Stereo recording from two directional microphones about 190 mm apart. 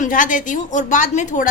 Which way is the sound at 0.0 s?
45° left (ahead or behind).